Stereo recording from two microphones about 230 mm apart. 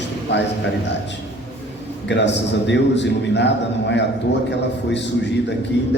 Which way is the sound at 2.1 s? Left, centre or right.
Left.